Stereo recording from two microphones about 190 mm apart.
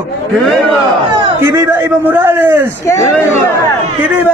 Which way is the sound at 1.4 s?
15° right (ahead or behind).